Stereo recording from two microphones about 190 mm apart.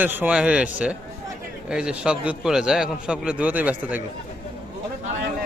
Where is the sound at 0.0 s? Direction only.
10° right (ahead or behind).